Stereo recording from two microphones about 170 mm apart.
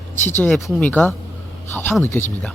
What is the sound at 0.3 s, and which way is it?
Speech, 5° left (ahead or behind).